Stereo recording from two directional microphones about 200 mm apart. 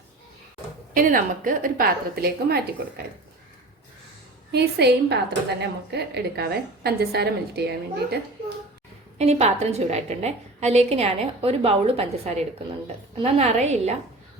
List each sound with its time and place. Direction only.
0.9 s a woman's voice: 45° right (ahead or behind)
4.5 s a woman's voice: 55° right (ahead or behind)
9.1 s a woman's voice: 35° right (ahead or behind)